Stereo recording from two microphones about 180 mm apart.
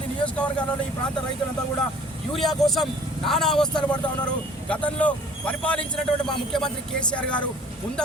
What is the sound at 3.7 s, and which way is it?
Speech, 25° left (ahead or behind).